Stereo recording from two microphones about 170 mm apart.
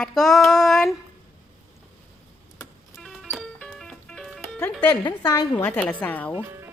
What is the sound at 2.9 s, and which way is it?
Music, centre (ahead or behind).